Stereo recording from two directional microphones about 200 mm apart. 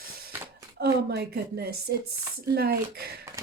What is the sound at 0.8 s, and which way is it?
A woman's voice, 55° right (ahead or behind).